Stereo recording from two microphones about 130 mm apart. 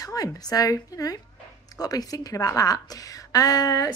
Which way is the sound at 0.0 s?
25° left (ahead or behind).